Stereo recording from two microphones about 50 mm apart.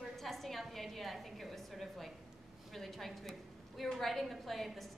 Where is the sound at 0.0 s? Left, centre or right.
Centre.